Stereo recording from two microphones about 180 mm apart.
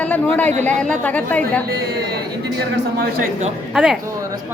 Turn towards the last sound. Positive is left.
turn(degrees=-5)  # may be behind; listen again after turning